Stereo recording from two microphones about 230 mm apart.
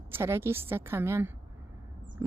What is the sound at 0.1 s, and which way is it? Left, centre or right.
Speech, centre.